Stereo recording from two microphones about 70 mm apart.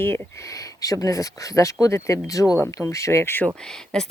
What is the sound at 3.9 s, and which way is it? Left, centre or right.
Speech, centre.